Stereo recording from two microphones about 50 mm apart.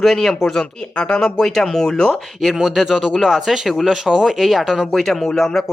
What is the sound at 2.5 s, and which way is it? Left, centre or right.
Speech, centre.